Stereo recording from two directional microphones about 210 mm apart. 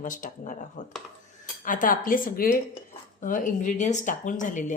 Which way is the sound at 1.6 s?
40° left (ahead or behind).